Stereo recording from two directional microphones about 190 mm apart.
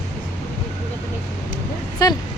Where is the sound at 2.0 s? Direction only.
20° left (ahead or behind).